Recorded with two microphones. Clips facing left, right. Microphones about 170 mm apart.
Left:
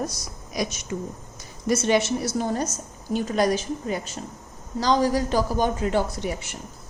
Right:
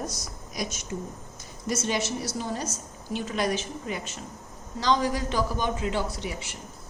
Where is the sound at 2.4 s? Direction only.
50° left (ahead or behind).